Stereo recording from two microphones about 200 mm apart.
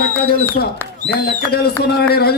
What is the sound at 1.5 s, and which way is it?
Speech, 50° left (ahead or behind).